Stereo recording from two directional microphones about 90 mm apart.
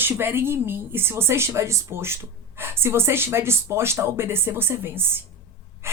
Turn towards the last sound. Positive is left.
turn(degrees=-30)  # may be behind; listen again after turning